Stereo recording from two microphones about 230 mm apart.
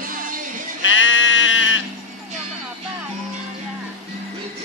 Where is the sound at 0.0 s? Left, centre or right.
Right.